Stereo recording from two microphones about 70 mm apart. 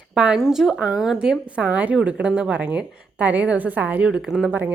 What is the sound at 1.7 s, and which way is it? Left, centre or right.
A woman's voice, right.